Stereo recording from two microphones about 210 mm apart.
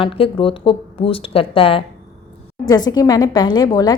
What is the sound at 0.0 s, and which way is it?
A woman's voice, 25° left (ahead or behind).